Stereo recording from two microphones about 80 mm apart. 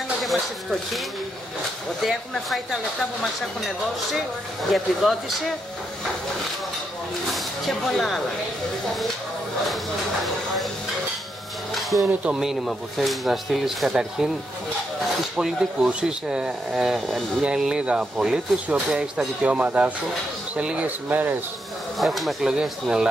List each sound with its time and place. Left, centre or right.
0.2 s speech: centre
2.0 s speech: centre
4.6 s speech: centre
7.3 s speech: centre
11.7 s a sound: centre
12.3 s speech: centre
15.3 s speech: centre
21.9 s speech: centre